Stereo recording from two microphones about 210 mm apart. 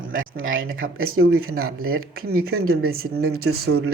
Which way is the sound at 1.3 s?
90° right.